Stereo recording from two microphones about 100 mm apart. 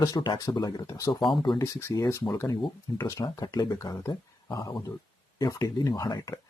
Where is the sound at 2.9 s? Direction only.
40° left (ahead or behind).